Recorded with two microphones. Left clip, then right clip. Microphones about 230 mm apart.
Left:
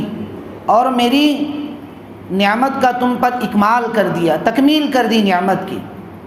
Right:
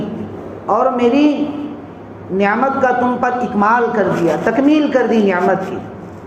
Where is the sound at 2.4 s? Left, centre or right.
Left.